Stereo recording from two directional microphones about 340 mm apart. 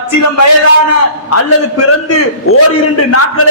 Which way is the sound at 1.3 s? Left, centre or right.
Left.